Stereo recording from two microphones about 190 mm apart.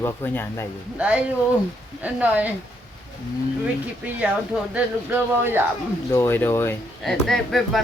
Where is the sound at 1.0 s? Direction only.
5° right (ahead or behind).